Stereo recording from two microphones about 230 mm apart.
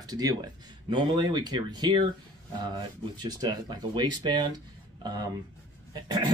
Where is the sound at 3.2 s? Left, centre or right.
Centre.